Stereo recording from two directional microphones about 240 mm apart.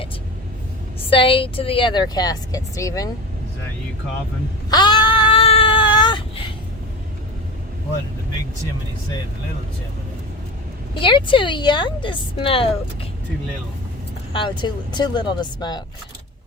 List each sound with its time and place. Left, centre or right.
1.1 s a woman's voice: left
4.7 s a sound: centre
10.9 s speech: left
14.3 s speech: centre